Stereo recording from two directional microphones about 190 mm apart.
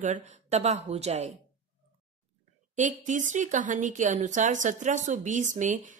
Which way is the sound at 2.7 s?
40° right (ahead or behind).